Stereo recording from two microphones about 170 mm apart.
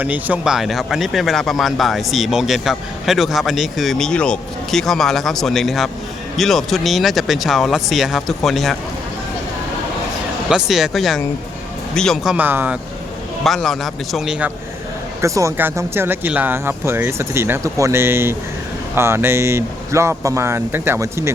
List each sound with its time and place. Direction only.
0.0 s speech: 10° right (ahead or behind)
10.5 s speech: 5° right (ahead or behind)
13.4 s speech: centre (ahead or behind)
15.2 s speech: 15° right (ahead or behind)